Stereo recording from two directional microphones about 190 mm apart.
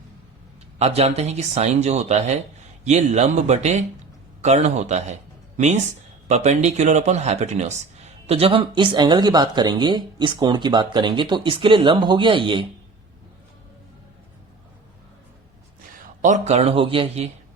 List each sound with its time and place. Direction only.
0.8 s speech: 35° right (ahead or behind)
16.2 s speech: 35° right (ahead or behind)